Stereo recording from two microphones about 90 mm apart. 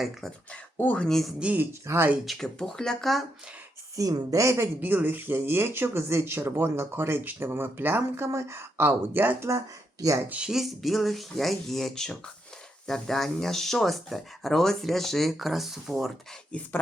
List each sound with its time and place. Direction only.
0.0 s speech: 5° left (ahead or behind)
0.5 s speech: 15° left (ahead or behind)
1.0 s speech: 5° left (ahead or behind)
1.4 s speech: 15° right (ahead or behind)
1.9 s a woman's voice: 35° right (ahead or behind)
2.2 s speech: centre (ahead or behind)
3.9 s a woman's voice: 40° right (ahead or behind)
4.8 s speech: 20° right (ahead or behind)
9.6 s speech: 40° right (ahead or behind)
10.2 s speech: 10° right (ahead or behind)
16.5 s speech: 15° left (ahead or behind)